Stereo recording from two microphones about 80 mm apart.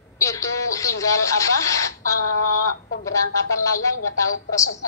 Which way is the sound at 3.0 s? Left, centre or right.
Left.